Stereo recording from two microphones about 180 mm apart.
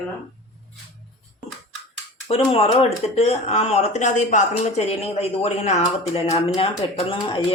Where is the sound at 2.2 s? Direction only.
35° left (ahead or behind).